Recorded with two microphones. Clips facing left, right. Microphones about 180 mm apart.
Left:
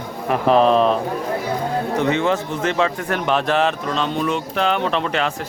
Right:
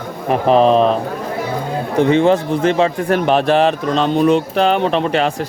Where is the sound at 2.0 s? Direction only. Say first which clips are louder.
Right 8 dB; 30° right (ahead or behind).